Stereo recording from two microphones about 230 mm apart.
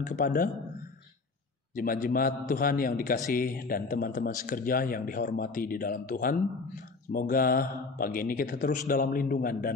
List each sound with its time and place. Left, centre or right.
0.0 s speech: left
1.8 s speech: left